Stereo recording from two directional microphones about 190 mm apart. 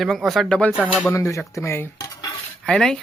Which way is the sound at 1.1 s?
15° left (ahead or behind).